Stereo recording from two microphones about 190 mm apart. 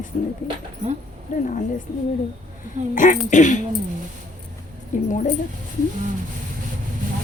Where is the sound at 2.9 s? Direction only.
40° left (ahead or behind).